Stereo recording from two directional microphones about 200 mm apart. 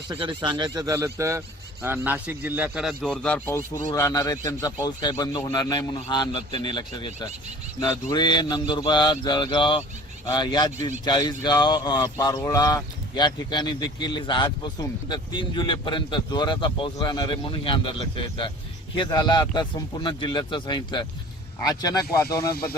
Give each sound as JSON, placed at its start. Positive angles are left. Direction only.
{"t": 0.1, "sound": "speech", "side_deg": -25}
{"t": 18.9, "sound": "speech", "side_deg": 20}